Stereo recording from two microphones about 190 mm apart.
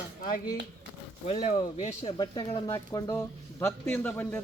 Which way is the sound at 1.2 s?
35° left (ahead or behind).